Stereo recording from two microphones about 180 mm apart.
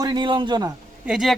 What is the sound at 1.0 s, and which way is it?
Speech, centre (ahead or behind).